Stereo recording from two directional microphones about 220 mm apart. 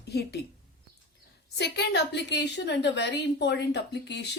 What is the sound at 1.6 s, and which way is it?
A woman's voice, 50° left (ahead or behind).